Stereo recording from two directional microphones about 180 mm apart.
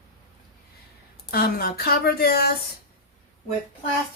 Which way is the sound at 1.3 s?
60° left (ahead or behind).